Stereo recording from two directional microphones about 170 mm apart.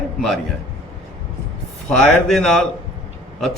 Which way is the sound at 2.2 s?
Centre (ahead or behind).